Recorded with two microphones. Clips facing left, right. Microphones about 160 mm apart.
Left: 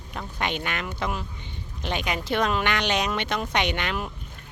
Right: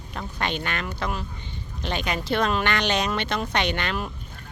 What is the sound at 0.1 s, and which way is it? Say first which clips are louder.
Speech: even; 15° left (ahead or behind).